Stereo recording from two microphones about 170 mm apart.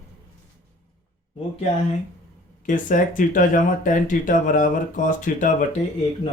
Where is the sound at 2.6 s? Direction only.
50° left (ahead or behind).